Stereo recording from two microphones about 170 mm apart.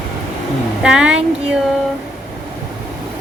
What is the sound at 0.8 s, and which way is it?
Speech, 5° right (ahead or behind).